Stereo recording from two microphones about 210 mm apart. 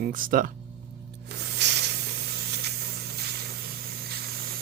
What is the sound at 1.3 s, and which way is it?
Spray, 55° right (ahead or behind).